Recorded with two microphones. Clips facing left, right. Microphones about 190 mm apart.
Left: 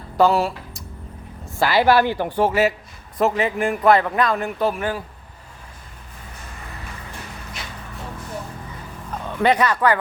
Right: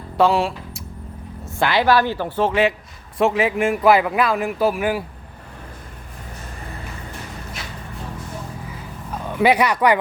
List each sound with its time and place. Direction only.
0.2 s a woman's voice: centre (ahead or behind)
9.2 s speech: 10° right (ahead or behind)